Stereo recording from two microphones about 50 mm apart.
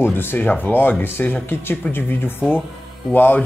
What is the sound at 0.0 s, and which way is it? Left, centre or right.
Speech, left.